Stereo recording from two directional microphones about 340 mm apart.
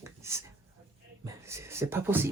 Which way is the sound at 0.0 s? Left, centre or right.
Centre.